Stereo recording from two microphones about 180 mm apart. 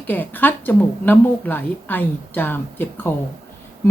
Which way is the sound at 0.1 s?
10° left (ahead or behind).